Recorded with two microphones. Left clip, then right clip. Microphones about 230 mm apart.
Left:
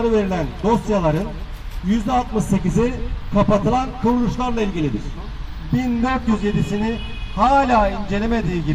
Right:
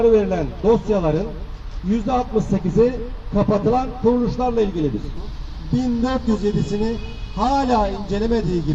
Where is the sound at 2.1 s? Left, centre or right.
Left.